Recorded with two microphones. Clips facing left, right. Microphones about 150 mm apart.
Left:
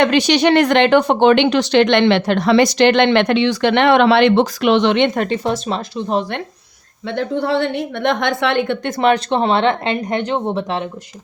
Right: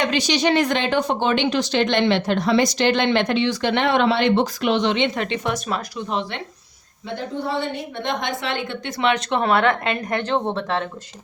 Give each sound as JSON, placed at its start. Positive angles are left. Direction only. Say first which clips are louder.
{"t": 0.0, "sound": "speech", "louder": "left 7 dB", "side_deg": 60}
{"t": 5.4, "sound": "speech", "louder": "left 4 dB", "side_deg": 30}
{"t": 6.1, "sound": "speech", "louder": "left 7 dB", "side_deg": 40}
{"t": 7.1, "sound": "a woman's voice", "louder": "left 7 dB", "side_deg": 75}